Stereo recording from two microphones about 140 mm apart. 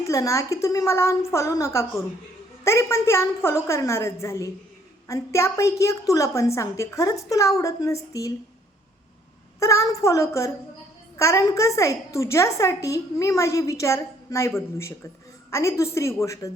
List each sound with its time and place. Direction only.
0.0 s a woman's voice: 20° left (ahead or behind)
9.6 s a woman's voice: 20° left (ahead or behind)